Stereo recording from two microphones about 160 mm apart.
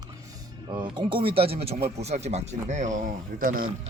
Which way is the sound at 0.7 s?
30° right (ahead or behind).